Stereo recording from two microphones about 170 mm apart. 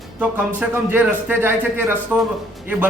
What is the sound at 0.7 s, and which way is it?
A man's voice, 10° right (ahead or behind).